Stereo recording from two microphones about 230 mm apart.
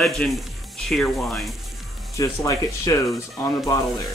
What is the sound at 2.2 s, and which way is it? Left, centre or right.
Speech, centre.